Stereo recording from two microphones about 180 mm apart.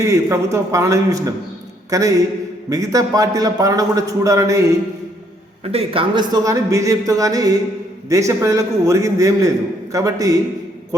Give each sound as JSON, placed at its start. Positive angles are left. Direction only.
{"t": 0.0, "sound": "a man's voice", "side_deg": -15}
{"t": 5.6, "sound": "a man's voice", "side_deg": -30}